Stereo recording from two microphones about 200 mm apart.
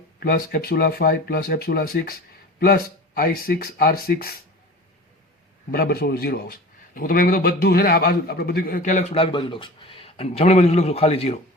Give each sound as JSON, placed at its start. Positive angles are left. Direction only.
{"t": 0.2, "sound": "a man's voice", "side_deg": 50}
{"t": 5.7, "sound": "a man's voice", "side_deg": 50}